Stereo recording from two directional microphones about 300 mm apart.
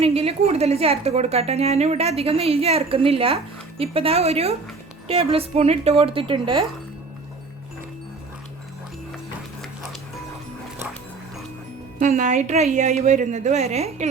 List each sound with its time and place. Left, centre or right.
0.0 s a woman's voice: centre
11.9 s a woman's voice: right